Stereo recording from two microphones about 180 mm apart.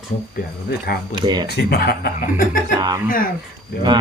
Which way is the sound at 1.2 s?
20° right (ahead or behind).